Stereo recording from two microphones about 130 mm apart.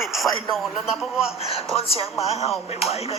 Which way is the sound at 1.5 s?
50° left (ahead or behind).